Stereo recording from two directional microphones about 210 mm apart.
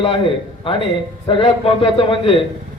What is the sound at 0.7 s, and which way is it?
Speech, 25° left (ahead or behind).